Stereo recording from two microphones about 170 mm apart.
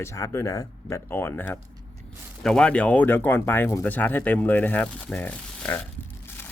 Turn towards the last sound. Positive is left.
turn(degrees=10)  # may be behind; listen again after turning